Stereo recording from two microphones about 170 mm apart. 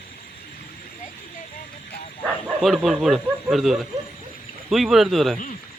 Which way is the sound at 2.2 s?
Centre (ahead or behind).